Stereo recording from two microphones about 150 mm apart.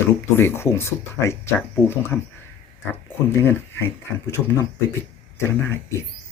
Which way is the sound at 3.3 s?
15° left (ahead or behind).